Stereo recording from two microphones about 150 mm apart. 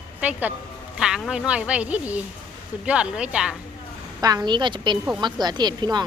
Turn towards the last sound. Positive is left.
turn(degrees=-25)  # may be behind; listen again after turning